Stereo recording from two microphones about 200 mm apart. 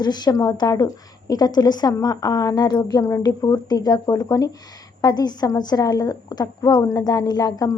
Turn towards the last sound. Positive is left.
turn(degrees=20)  # may be behind; listen again after turning